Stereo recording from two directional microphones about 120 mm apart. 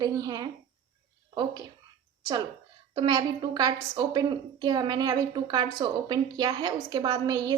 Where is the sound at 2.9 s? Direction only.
40° right (ahead or behind).